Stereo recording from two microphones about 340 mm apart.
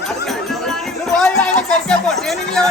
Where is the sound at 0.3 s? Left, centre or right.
Centre.